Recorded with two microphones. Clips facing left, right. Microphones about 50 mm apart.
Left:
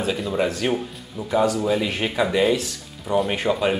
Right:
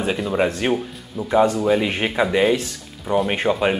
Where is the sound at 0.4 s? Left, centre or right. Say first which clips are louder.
Right 2 dB; right.